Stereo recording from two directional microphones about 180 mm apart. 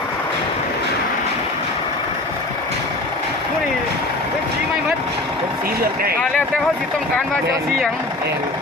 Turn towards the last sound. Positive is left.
turn(degrees=5)  # may be behind; listen again after turning